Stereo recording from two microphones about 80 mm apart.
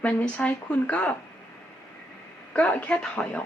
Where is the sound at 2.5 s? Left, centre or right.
Centre.